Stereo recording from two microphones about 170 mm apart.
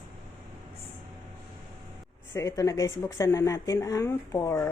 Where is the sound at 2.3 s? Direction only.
15° left (ahead or behind).